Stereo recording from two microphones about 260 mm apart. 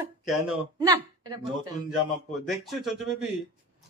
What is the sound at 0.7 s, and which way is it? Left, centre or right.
Speech, centre.